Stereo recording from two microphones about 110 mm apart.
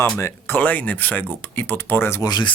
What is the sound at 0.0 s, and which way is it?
Speech, 25° left (ahead or behind).